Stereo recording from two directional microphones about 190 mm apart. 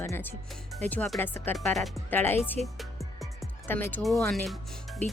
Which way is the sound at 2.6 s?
40° right (ahead or behind).